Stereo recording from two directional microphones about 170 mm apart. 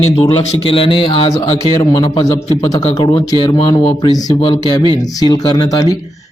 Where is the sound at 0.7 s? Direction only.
30° left (ahead or behind).